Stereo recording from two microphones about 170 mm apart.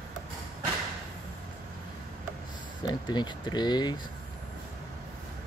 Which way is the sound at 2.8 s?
25° left (ahead or behind).